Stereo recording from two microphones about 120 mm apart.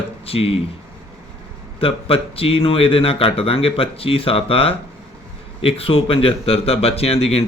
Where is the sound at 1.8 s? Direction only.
50° left (ahead or behind).